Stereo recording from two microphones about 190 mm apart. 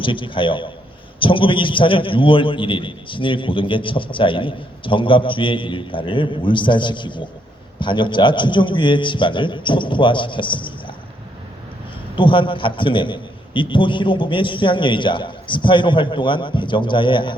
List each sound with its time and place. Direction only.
0.0 s a man's voice: 25° left (ahead or behind)
12.1 s a man's voice: 25° left (ahead or behind)